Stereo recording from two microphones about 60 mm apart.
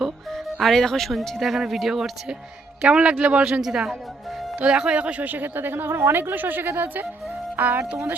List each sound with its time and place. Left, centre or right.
0.0 s speech: centre
2.8 s speech: right
3.6 s a woman's voice: centre; by 7.9 s right